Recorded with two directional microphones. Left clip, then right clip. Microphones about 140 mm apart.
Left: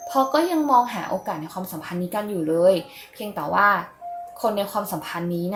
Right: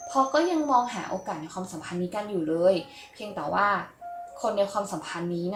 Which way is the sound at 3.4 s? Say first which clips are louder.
Left 6 dB; 45° left (ahead or behind).